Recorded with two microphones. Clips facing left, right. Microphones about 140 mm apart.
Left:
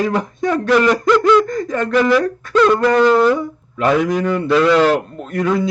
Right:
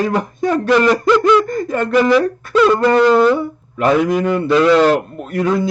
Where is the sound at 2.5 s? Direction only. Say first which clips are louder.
Right 1 dB; 5° right (ahead or behind).